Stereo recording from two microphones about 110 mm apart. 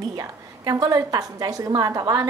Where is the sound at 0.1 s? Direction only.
35° right (ahead or behind).